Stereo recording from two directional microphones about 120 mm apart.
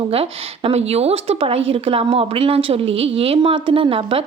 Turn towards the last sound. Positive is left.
turn(degrees=-50)  # may be behind; listen again after turning